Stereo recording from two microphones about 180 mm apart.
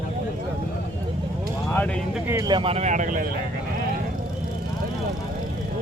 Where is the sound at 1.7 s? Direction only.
10° left (ahead or behind).